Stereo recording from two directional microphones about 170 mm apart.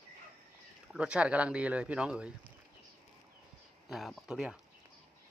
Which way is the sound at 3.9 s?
Centre (ahead or behind).